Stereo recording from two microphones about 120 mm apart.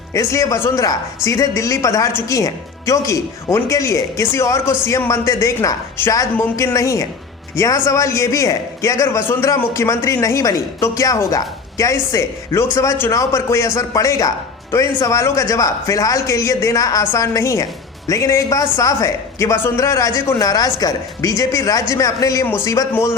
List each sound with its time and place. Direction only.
0.1 s a man's voice: 25° left (ahead or behind)